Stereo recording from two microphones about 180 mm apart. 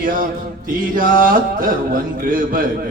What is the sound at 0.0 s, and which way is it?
Mantra, 50° right (ahead or behind).